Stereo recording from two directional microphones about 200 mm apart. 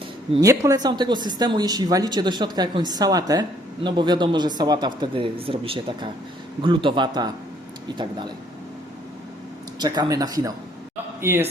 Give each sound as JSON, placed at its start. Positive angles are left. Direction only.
{"t": 0.3, "sound": "a woman's voice", "side_deg": -15}
{"t": 9.7, "sound": "a woman's voice", "side_deg": -20}